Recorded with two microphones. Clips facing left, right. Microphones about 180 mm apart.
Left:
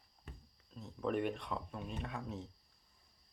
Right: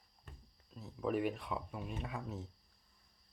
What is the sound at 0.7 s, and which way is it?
Speech, 5° right (ahead or behind).